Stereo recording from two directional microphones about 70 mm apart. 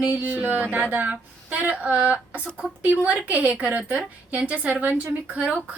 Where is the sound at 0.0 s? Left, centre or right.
Right.